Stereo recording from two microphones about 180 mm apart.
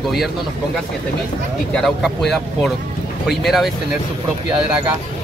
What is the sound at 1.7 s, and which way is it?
Speech, centre (ahead or behind).